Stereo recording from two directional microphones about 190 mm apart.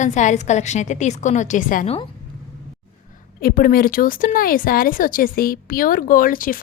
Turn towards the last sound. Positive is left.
turn(degrees=45)  # may be behind; listen again after turning